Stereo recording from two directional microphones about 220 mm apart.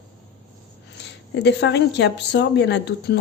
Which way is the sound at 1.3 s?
50° left (ahead or behind).